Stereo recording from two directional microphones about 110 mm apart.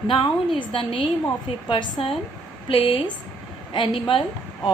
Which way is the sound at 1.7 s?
55° left (ahead or behind).